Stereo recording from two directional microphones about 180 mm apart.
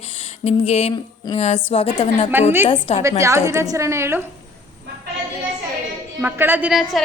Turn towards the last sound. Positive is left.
turn(degrees=-5)  # may be behind; listen again after turning